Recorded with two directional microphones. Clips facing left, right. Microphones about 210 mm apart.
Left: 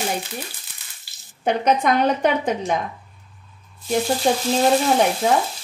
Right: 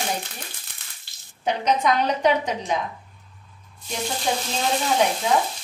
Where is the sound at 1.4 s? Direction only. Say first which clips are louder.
Left 3 dB; 55° left (ahead or behind).